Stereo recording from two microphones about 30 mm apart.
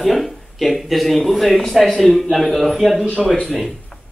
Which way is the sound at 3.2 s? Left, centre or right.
Centre.